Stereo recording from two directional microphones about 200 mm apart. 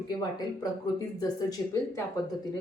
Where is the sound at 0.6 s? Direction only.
20° left (ahead or behind).